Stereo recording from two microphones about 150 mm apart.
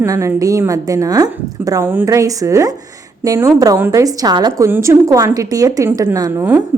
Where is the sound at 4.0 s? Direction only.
25° right (ahead or behind).